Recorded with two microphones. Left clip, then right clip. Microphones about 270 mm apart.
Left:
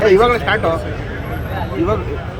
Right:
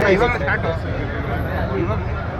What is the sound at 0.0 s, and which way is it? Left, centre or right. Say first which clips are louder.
Speech: left 5 dB; left.